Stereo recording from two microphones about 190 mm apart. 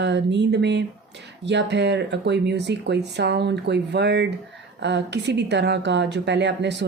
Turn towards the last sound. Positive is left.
turn(degrees=-65)  # may be behind; listen again after turning